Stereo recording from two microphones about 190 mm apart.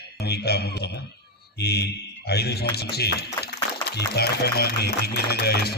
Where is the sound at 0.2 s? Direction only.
60° left (ahead or behind).